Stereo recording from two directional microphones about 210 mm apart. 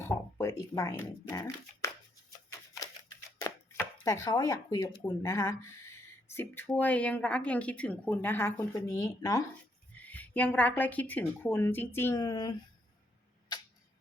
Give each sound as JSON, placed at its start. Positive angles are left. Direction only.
{"t": 0.0, "sound": "a sound", "side_deg": 15}
{"t": 0.8, "sound": "speech", "side_deg": 15}
{"t": 2.8, "sound": "scissors", "side_deg": 15}
{"t": 3.3, "sound": "chopping", "side_deg": 15}
{"t": 5.0, "sound": "speech", "side_deg": 15}